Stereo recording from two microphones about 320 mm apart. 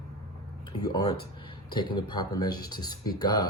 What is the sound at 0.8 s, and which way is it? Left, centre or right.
Speech, centre.